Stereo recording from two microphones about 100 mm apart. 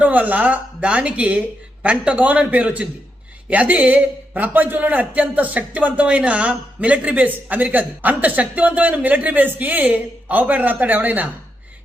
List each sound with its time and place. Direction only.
0.0 s a man's voice: 15° right (ahead or behind)